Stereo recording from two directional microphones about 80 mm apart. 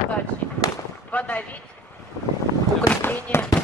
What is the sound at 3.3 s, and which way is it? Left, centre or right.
Fireworks, left.